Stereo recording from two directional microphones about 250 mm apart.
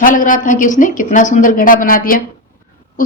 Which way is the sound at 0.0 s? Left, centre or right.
Left.